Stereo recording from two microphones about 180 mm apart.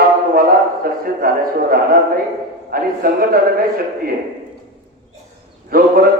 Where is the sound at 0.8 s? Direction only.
55° right (ahead or behind).